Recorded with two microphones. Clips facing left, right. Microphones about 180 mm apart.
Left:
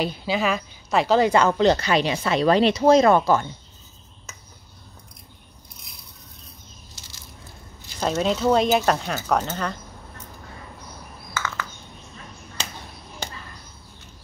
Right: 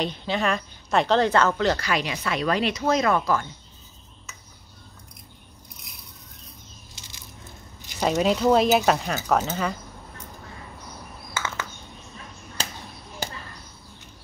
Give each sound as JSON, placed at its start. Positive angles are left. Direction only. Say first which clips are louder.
{"t": 0.0, "sound": "speech", "louder": "left 2 dB", "side_deg": 5}
{"t": 1.5, "sound": "speech", "louder": "left 5 dB", "side_deg": 20}
{"t": 7.8, "sound": "speech", "louder": "right 1 dB", "side_deg": -15}
{"t": 11.3, "sound": "frog", "louder": "left 1 dB", "side_deg": -20}